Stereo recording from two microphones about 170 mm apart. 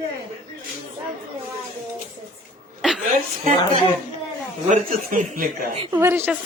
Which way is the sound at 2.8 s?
Centre (ahead or behind).